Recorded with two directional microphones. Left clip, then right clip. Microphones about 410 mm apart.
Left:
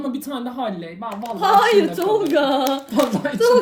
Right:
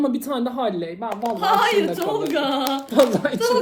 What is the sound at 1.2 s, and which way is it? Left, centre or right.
Speech, centre.